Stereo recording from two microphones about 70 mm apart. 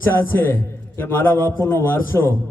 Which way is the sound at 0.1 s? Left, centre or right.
Left.